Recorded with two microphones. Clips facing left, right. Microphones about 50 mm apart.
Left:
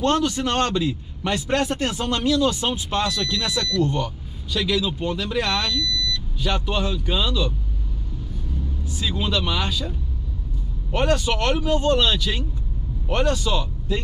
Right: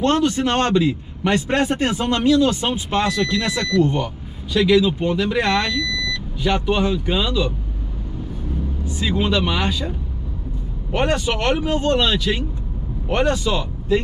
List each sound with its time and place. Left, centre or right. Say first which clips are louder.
0.0 s a man's voice: right 3 dB; right
8.9 s a man's voice: right 5 dB; right